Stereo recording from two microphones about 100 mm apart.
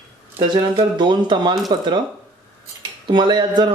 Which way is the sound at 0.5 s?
50° right (ahead or behind).